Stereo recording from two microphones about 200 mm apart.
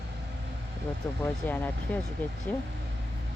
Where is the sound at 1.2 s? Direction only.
10° left (ahead or behind).